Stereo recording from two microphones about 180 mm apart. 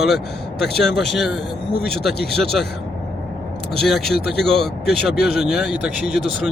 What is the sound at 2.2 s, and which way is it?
Speech, 65° left (ahead or behind).